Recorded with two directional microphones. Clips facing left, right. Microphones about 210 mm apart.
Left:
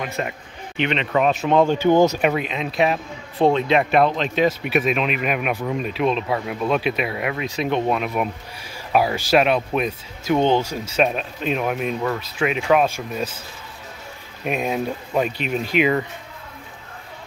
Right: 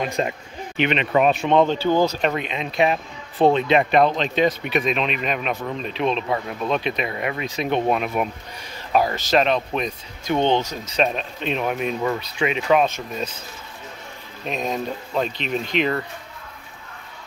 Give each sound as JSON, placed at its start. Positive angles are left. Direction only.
{"t": 0.0, "sound": "a man's voice", "side_deg": -25}
{"t": 0.9, "sound": "speech", "side_deg": -10}
{"t": 1.3, "sound": "speech", "side_deg": 5}
{"t": 1.8, "sound": "speech", "side_deg": 20}
{"t": 8.7, "sound": "speech", "side_deg": 10}
{"t": 14.4, "sound": "speech", "side_deg": 10}